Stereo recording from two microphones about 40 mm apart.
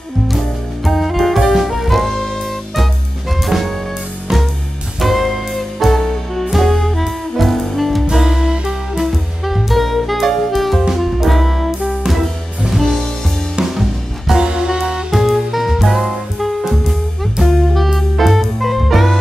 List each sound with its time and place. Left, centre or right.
0.8 s music: centre
3.4 s jazz: centre
5.0 s music: centre
8.1 s music: centre
13.7 s music: centre
14.4 s music: centre
15.0 s music: centre